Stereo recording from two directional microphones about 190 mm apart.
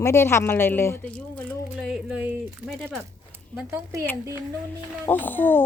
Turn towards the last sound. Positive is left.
turn(degrees=10)  # may be behind; listen again after turning